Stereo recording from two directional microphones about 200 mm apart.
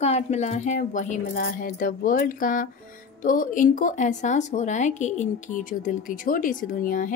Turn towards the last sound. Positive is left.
turn(degrees=40)  # may be behind; listen again after turning